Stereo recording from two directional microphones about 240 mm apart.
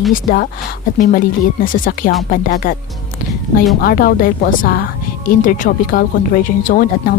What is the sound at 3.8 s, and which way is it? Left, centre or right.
A woman's voice, left.